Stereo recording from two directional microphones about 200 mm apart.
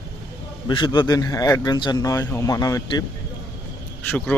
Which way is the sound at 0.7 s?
20° left (ahead or behind).